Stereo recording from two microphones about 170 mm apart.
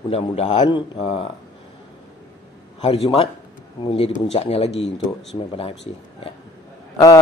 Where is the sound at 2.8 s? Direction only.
35° left (ahead or behind).